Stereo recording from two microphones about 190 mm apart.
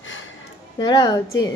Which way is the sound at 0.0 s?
85° left.